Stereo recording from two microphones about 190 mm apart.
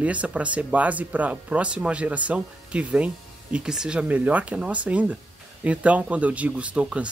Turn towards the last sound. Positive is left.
turn(degrees=-5)  # may be behind; listen again after turning